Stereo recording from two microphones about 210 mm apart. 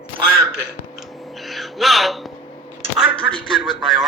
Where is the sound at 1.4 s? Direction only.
Centre (ahead or behind).